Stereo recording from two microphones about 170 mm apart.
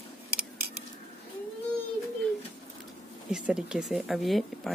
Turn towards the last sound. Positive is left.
turn(degrees=0)  # may be behind; listen again after turning